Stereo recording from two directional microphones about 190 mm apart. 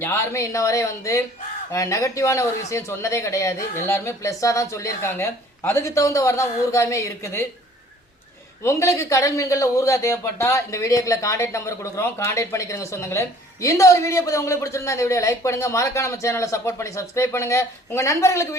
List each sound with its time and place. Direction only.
0.0 s speech: 15° left (ahead or behind)
8.6 s speech: 15° left (ahead or behind)